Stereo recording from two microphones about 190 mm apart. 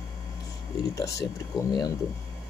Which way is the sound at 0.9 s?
15° left (ahead or behind).